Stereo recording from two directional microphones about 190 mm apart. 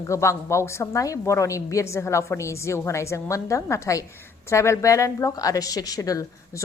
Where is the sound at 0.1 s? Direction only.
15° left (ahead or behind).